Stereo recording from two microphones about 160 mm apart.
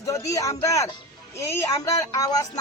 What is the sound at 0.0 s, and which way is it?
A woman's voice, 20° left (ahead or behind).